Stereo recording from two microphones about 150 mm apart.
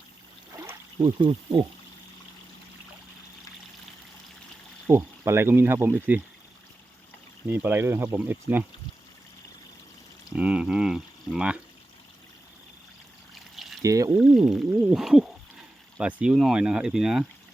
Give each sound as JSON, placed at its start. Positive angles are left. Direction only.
{"t": 1.0, "sound": "speech", "side_deg": -30}
{"t": 4.9, "sound": "speech", "side_deg": -20}
{"t": 7.4, "sound": "speech", "side_deg": -15}
{"t": 10.3, "sound": "speech", "side_deg": -5}
{"t": 13.8, "sound": "speech", "side_deg": -20}
{"t": 14.2, "sound": "speech", "side_deg": -5}